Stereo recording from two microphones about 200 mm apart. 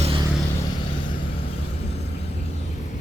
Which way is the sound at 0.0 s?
25° right (ahead or behind).